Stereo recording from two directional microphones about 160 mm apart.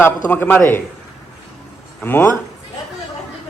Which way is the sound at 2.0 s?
15° left (ahead or behind).